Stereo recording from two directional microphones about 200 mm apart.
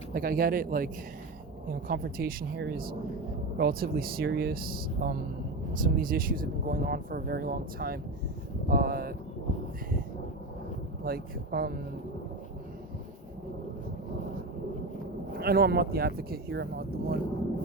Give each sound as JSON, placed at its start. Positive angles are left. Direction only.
{"t": 0.1, "sound": "speech", "side_deg": -45}
{"t": 1.9, "sound": "speech", "side_deg": -45}
{"t": 11.0, "sound": "speech", "side_deg": -50}
{"t": 15.3, "sound": "speech", "side_deg": -50}